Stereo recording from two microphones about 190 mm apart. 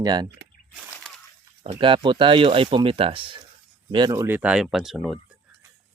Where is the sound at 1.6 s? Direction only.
30° right (ahead or behind); by 5.1 s centre (ahead or behind).